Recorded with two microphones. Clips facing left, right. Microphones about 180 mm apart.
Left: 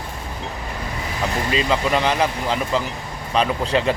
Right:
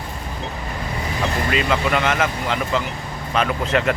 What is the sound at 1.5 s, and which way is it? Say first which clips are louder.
Speech: left 1 dB; 25° left (ahead or behind).